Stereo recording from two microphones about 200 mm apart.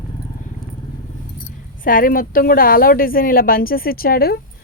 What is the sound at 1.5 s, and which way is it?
A woman's voice, 45° left (ahead or behind).